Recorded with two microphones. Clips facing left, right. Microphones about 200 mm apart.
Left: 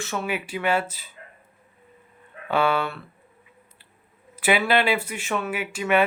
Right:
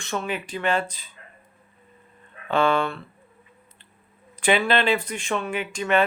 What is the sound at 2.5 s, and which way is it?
Speech, 10° left (ahead or behind).